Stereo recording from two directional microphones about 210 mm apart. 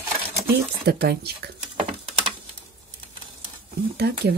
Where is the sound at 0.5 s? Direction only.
50° right (ahead or behind).